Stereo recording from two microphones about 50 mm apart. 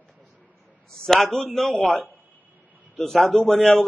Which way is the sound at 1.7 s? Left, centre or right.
Left.